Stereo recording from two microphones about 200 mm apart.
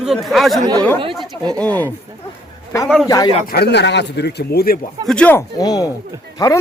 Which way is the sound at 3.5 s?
55° left (ahead or behind).